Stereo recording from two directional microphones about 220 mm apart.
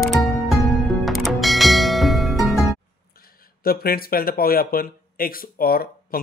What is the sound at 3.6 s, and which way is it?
Speech, 45° left (ahead or behind).